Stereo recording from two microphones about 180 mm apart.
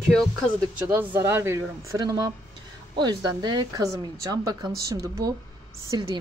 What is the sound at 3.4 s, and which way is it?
Speech, 20° right (ahead or behind).